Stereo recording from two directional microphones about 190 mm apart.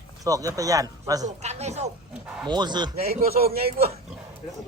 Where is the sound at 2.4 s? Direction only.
25° right (ahead or behind).